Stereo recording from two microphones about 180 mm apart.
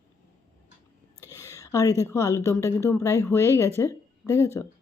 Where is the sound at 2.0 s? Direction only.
15° left (ahead or behind).